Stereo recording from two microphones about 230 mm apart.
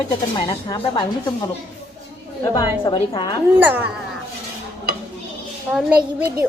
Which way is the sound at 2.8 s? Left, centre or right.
Centre.